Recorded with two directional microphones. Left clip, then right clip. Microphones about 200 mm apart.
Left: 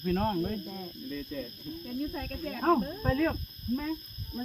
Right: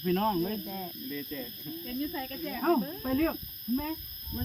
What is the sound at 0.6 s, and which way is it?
Speech, 45° right (ahead or behind).